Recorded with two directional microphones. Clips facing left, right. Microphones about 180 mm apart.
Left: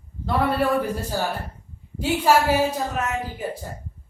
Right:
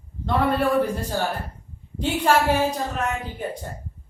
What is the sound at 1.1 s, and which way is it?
Speech, 5° left (ahead or behind).